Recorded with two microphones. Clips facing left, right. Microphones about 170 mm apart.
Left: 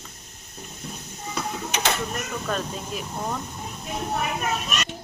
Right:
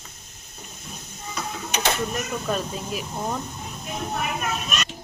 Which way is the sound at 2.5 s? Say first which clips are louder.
Right 1 dB; 10° right (ahead or behind).